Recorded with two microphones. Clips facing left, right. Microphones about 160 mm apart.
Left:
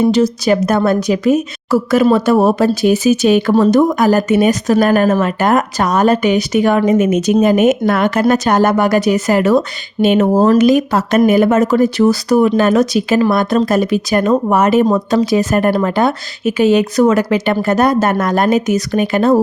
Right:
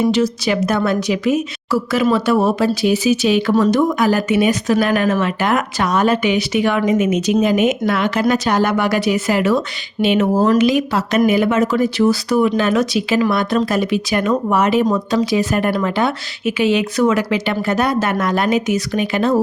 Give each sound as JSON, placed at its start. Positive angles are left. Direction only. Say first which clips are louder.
{"t": 0.0, "sound": "speech", "louder": "left 4 dB", "side_deg": 40}